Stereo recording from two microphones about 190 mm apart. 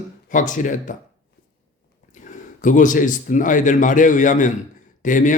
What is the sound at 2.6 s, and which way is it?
A man's voice, 40° left (ahead or behind).